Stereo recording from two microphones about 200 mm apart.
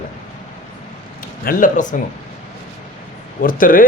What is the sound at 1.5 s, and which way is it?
Speech, 40° left (ahead or behind).